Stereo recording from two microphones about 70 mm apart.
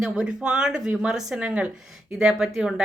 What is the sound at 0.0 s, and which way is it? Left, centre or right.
Speech, centre.